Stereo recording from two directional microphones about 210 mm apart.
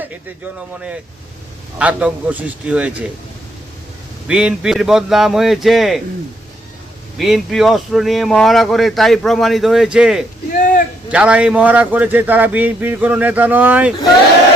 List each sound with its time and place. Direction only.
1.8 s speech: 5° right (ahead or behind)
4.3 s speech: 5° right (ahead or behind)
7.2 s speech: centre (ahead or behind)
10.6 s a sound: 40° left (ahead or behind)
11.1 s a man's voice: 5° right (ahead or behind)